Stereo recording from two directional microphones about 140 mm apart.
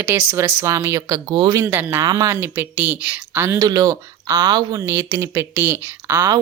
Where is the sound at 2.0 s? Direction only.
25° right (ahead or behind).